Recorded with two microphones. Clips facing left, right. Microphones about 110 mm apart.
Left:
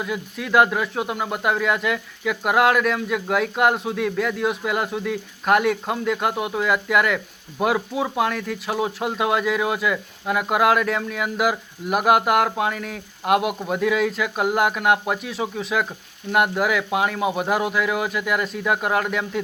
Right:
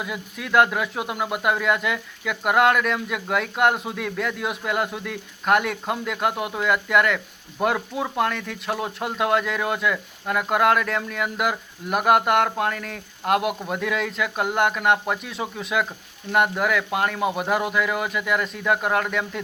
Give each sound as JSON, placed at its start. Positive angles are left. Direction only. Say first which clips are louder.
{"t": 0.0, "sound": "speech", "louder": "left 4 dB", "side_deg": 0}